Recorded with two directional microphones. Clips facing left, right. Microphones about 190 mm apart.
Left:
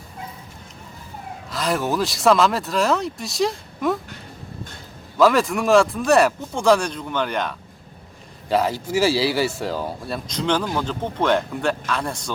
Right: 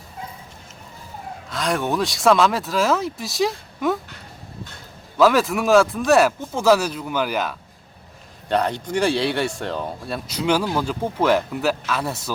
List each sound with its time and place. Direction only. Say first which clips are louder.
1.5 s speech: even; centre (ahead or behind)
5.1 s speech: even; centre (ahead or behind)
10.2 s speech: right 2 dB; 10° right (ahead or behind)